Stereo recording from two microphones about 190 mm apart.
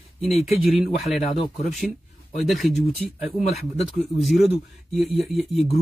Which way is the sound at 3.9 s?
Centre (ahead or behind).